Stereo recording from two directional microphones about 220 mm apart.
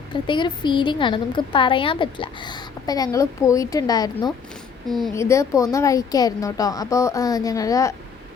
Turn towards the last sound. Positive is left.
turn(degrees=15)  # may be behind; listen again after turning